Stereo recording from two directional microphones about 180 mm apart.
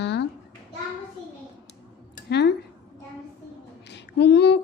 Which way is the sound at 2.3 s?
70° left (ahead or behind).